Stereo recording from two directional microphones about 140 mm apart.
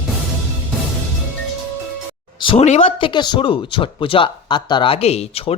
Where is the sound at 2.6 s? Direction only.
45° left (ahead or behind).